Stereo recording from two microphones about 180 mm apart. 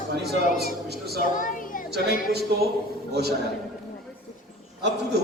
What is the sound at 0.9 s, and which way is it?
Speech, 65° right (ahead or behind).